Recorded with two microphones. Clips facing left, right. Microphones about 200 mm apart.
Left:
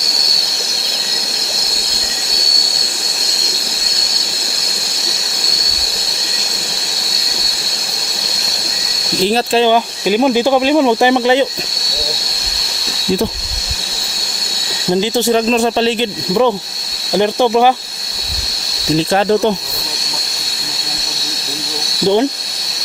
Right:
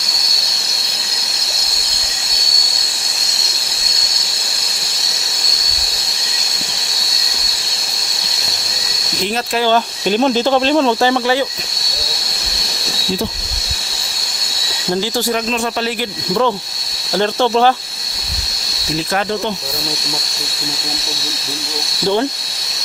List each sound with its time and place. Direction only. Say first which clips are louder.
9.2 s speech: left 6 dB; 30° left (ahead or behind)
9.6 s speech: left 2 dB; 10° left (ahead or behind)
15.0 s speech: left 5 dB; 25° left (ahead or behind)
16.3 s speech: left 3 dB; 15° left (ahead or behind)
22.0 s speech: left 4 dB; 20° left (ahead or behind)